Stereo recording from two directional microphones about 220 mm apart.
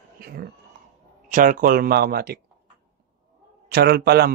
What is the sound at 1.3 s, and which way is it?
Speech, 35° right (ahead or behind).